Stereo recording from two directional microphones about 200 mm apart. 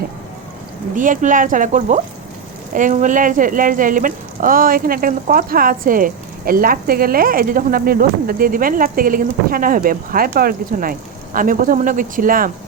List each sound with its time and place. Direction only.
0.9 s speech: 40° right (ahead or behind)